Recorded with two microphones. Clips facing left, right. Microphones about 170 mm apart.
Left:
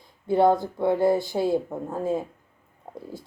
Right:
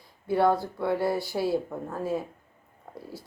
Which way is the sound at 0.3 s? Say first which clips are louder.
Left 4 dB; 20° left (ahead or behind).